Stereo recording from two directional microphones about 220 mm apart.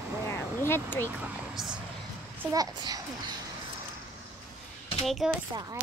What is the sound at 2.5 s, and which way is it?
Speech, 20° right (ahead or behind).